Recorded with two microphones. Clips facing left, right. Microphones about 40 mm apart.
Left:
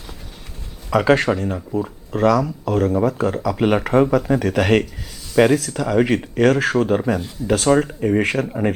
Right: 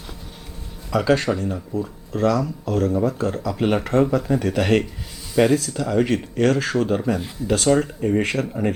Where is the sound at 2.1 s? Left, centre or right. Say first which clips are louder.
Left 4 dB; left.